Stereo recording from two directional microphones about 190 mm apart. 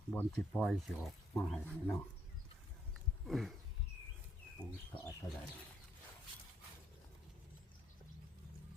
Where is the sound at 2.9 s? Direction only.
Centre (ahead or behind).